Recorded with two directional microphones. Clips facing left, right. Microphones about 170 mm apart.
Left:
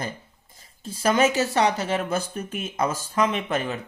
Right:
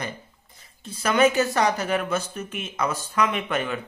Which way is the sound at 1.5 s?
30° left (ahead or behind).